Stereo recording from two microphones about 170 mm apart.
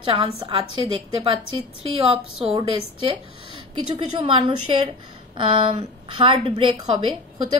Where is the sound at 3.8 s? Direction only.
25° right (ahead or behind).